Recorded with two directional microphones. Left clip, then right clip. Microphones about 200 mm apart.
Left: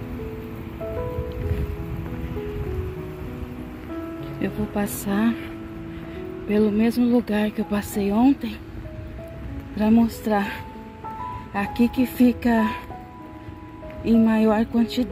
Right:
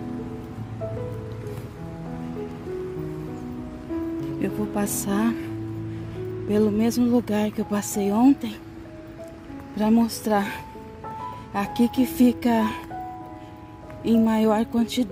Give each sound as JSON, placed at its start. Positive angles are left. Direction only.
{"t": 4.4, "sound": "speech", "side_deg": -15}
{"t": 6.5, "sound": "speech", "side_deg": -15}
{"t": 9.8, "sound": "speech", "side_deg": -15}
{"t": 11.5, "sound": "speech", "side_deg": -15}
{"t": 14.0, "sound": "speech", "side_deg": -15}